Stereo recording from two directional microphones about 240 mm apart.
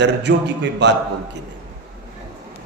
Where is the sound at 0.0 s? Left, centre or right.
Right.